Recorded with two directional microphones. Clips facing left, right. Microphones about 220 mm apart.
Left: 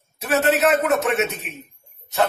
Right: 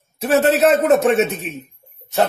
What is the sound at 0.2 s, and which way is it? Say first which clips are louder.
A man's voice: right 4 dB; 30° right (ahead or behind).